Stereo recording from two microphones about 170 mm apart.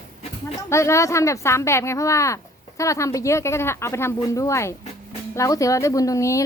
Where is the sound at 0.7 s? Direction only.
15° left (ahead or behind).